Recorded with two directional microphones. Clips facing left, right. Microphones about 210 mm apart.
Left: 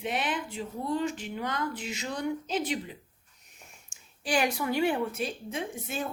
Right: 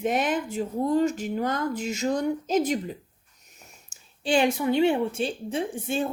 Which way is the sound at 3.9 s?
40° right (ahead or behind).